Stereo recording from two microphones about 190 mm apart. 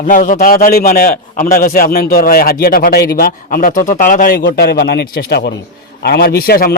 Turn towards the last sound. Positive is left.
turn(degrees=50)  # may be behind; listen again after turning